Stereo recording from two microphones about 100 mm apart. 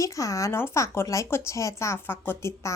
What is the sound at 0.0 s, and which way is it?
Speech, 30° left (ahead or behind).